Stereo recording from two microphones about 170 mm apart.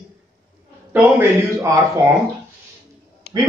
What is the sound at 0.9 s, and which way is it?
Speech, 15° right (ahead or behind).